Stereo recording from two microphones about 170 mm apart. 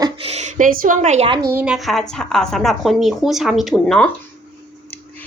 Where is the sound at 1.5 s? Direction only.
10° right (ahead or behind).